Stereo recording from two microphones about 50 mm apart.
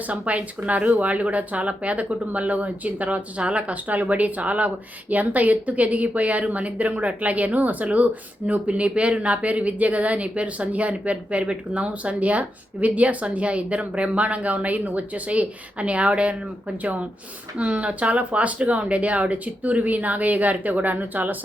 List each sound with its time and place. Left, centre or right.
0.1 s speech: right